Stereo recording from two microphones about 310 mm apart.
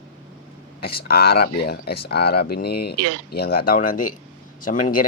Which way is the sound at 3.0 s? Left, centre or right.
Right.